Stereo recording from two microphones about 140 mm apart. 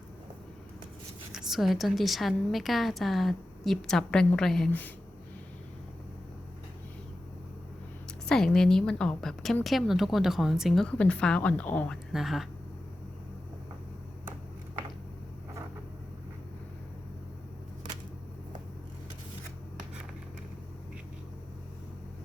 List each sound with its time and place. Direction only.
1.3 s a woman's voice: 5° right (ahead or behind)
8.3 s a woman's voice: 5° left (ahead or behind)
12.1 s a woman's voice: centre (ahead or behind)